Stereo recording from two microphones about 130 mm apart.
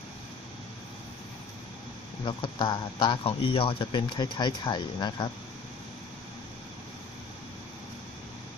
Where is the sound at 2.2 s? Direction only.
40° left (ahead or behind).